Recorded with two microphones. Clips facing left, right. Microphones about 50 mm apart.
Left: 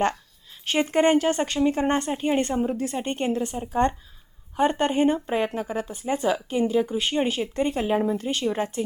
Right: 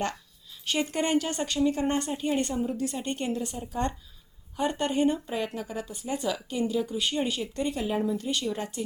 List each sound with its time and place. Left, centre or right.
0.6 s speech: left